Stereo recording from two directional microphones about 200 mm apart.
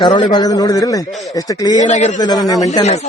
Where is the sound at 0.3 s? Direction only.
20° left (ahead or behind).